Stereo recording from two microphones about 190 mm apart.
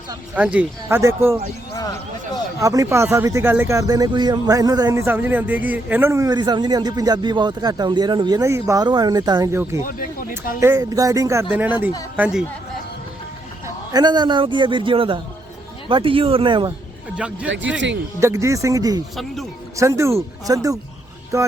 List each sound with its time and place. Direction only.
0.3 s speech: 5° right (ahead or behind)
2.6 s speech: 15° right (ahead or behind)
9.8 s speech: 45° left (ahead or behind)
10.6 s speech: 15° right (ahead or behind)
13.9 s speech: 20° right (ahead or behind)
17.2 s speech: 5° right (ahead or behind)
19.1 s speech: centre (ahead or behind)
19.7 s speech: 15° right (ahead or behind)